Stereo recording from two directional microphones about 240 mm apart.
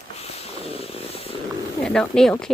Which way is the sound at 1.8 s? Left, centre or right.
Centre.